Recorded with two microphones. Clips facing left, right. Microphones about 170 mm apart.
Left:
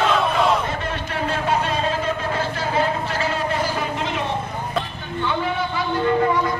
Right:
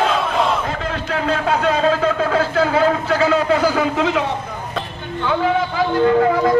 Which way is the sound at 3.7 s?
90° right.